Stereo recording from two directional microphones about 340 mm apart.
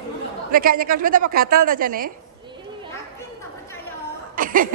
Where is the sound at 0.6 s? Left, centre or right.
Right.